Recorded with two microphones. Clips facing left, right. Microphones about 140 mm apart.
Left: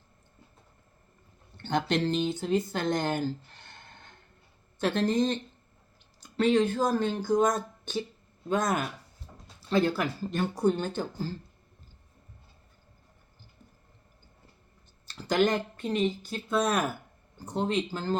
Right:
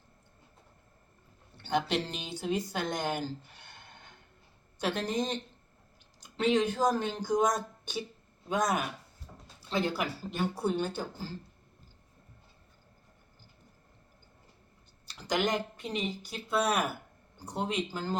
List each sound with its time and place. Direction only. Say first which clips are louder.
1.5 s speech: left 2 dB; 5° right (ahead or behind)
4.8 s speech: left 6 dB; 15° right (ahead or behind)
15.0 s speech: left 5 dB; 15° right (ahead or behind)